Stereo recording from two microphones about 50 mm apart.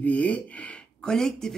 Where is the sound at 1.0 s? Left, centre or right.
Centre.